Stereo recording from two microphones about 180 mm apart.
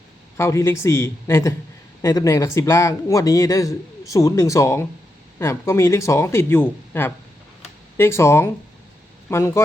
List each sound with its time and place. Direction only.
0.3 s speech: 15° left (ahead or behind)